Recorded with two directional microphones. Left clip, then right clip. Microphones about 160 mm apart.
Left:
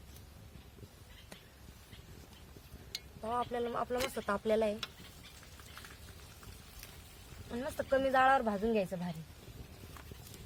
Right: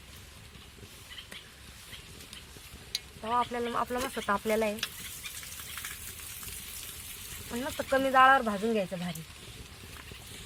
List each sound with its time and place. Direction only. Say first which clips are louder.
3.2 s speech: right 5 dB; 35° left (ahead or behind)
7.5 s speech: right 3 dB; 35° left (ahead or behind)